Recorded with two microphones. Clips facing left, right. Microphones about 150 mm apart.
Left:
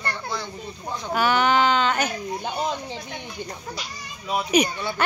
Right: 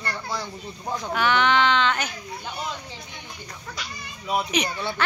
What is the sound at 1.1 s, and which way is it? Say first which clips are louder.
A child's voice: left 1 dB; 40° left (ahead or behind).